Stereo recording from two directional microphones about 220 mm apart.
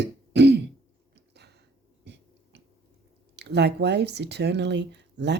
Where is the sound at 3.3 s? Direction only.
50° right (ahead or behind).